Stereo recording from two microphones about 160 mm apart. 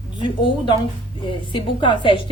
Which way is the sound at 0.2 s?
30° left (ahead or behind).